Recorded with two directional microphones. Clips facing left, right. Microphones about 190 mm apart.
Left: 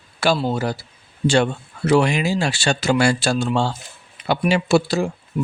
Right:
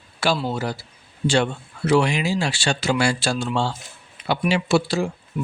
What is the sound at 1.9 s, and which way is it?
Speech, 45° left (ahead or behind).